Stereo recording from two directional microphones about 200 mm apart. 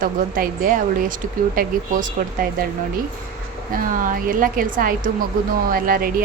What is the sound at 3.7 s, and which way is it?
A woman's voice, 45° right (ahead or behind).